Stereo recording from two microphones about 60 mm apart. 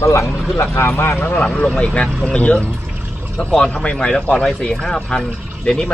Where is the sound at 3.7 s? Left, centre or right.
Centre.